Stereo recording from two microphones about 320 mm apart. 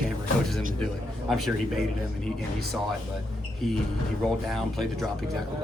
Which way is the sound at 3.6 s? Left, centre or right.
Centre.